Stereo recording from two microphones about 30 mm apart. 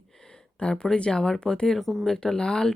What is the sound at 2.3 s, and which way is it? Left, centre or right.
Speech, left.